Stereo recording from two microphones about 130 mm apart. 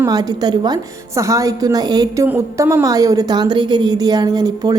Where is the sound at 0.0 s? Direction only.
30° right (ahead or behind).